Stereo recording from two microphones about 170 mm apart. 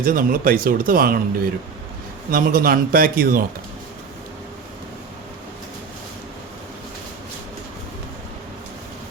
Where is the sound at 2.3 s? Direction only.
55° right (ahead or behind).